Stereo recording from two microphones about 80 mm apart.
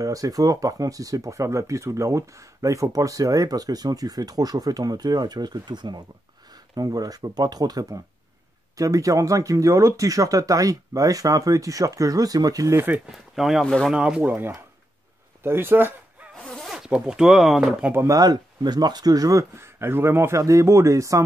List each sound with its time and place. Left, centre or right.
0.0 s speech: right
6.5 s speech: right
13.1 s speech: centre
14.2 s speech: right
16.3 s zipper: centre
16.7 s speech: centre
18.0 s speech: right
19.6 s a man's voice: right